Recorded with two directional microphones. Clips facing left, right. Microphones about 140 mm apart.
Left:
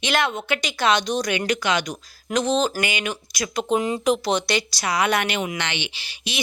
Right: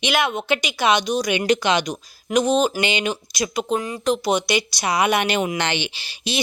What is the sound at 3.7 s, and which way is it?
Speech, 25° left (ahead or behind).